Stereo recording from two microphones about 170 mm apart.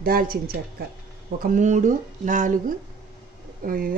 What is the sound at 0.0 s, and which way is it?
Speech, 60° right (ahead or behind).